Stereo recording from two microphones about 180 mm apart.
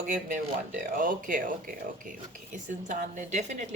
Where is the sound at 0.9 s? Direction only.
50° right (ahead or behind).